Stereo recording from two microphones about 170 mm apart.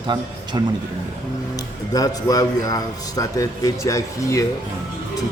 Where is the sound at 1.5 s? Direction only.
20° left (ahead or behind).